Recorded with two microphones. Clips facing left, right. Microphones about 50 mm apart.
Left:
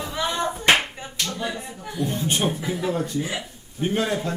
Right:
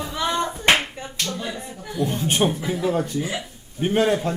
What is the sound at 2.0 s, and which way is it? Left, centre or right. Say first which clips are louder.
Speech: right 3 dB; right.